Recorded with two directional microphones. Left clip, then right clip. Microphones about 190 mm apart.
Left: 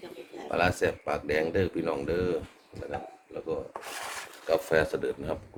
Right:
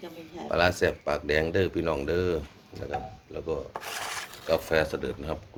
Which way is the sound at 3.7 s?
35° right (ahead or behind).